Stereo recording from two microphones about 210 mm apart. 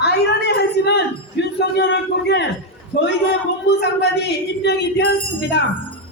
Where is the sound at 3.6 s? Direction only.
50° left (ahead or behind).